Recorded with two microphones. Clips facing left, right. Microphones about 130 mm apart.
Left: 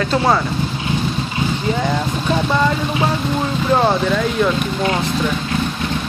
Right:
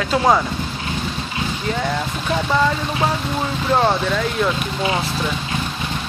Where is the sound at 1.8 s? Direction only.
5° left (ahead or behind).